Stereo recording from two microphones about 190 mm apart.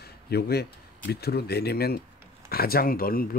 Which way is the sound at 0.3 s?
55° left (ahead or behind).